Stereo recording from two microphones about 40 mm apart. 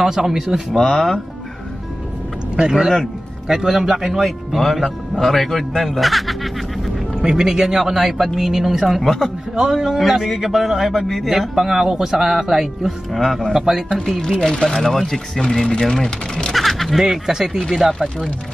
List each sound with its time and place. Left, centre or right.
0.0 s speech: centre
0.7 s speech: centre
3.4 s speech: centre
7.2 s speech: centre
9.0 s speech: centre
9.6 s speech: centre
13.2 s speech: centre
13.5 s speech: centre
14.2 s speech: centre
15.4 s speech: centre
16.5 s a sound: centre
17.0 s speech: centre
17.6 s speech: centre